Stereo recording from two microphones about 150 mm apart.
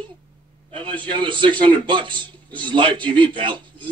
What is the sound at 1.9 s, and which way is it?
Speech, 35° right (ahead or behind).